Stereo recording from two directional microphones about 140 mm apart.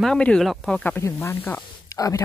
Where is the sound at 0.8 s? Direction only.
15° left (ahead or behind).